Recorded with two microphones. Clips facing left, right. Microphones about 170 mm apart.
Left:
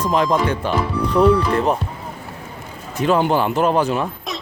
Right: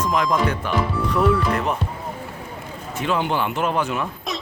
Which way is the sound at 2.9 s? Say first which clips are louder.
Left 6 dB; 40° left (ahead or behind).